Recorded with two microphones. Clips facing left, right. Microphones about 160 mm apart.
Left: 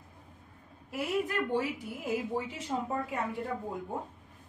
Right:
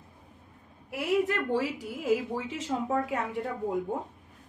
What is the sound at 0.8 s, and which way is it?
A woman's voice, 75° right (ahead or behind).